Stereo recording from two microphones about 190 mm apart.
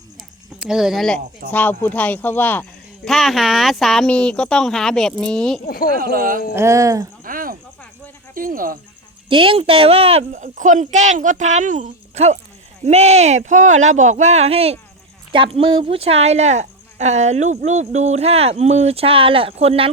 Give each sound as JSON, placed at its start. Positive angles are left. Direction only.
{"t": 0.6, "sound": "speech", "side_deg": -5}
{"t": 5.6, "sound": "speech", "side_deg": 50}
{"t": 6.0, "sound": "speech", "side_deg": -50}
{"t": 6.5, "sound": "speech", "side_deg": -15}
{"t": 7.3, "sound": "cricket", "side_deg": -50}
{"t": 8.4, "sound": "speech", "side_deg": -45}
{"t": 9.3, "sound": "speech", "side_deg": -30}